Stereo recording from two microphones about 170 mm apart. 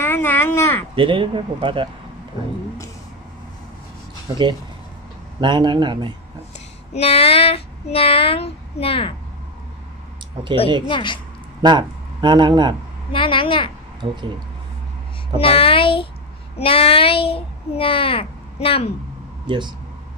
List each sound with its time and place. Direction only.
0.0 s a sound: 15° left (ahead or behind)
0.9 s speech: 30° right (ahead or behind)
4.3 s speech: 25° right (ahead or behind)
6.9 s speech: 35° left (ahead or behind)
10.9 s a child's voice: 30° left (ahead or behind)
11.6 s speech: 25° right (ahead or behind)
13.1 s a child's voice: 30° left (ahead or behind)
14.0 s speech: 30° right (ahead or behind)
15.3 s speech: 35° left (ahead or behind)
19.4 s speech: 25° right (ahead or behind)